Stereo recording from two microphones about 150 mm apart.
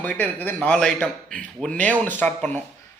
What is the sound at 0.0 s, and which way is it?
Speech, 10° left (ahead or behind).